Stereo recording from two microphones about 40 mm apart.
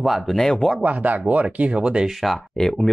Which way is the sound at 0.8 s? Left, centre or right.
Right.